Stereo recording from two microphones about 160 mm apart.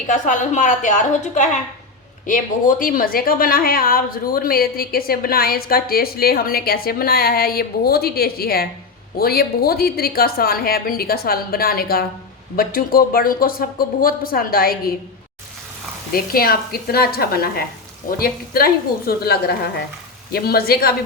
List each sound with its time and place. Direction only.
0.1 s a woman's voice: 50° left (ahead or behind); by 14.9 s 70° left (ahead or behind)
16.1 s a woman's voice: 70° left (ahead or behind)